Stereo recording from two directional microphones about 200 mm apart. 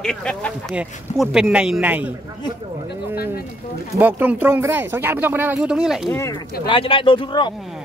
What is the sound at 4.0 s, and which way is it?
Speech, 10° right (ahead or behind).